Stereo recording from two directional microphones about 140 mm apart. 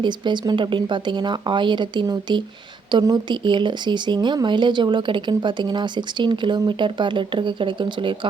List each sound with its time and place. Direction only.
0.0 s speech: 35° right (ahead or behind)